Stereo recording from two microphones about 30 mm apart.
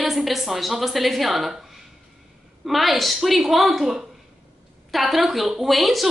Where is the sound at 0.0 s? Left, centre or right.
Centre.